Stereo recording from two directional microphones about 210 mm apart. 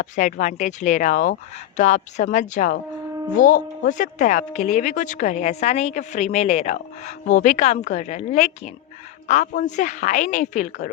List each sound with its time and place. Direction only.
0.0 s a woman's voice: 35° left (ahead or behind)